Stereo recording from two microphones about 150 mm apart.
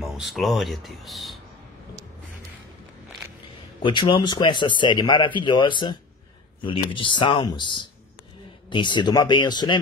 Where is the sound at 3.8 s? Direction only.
30° left (ahead or behind).